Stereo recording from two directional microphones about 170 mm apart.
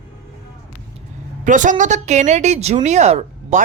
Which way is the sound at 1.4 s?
50° right (ahead or behind).